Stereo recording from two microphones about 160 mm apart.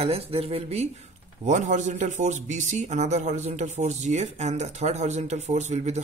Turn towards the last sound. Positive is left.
turn(degrees=-45)  # may be behind; listen again after turning